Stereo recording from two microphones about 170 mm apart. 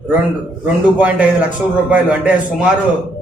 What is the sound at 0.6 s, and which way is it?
A man's voice, 10° right (ahead or behind).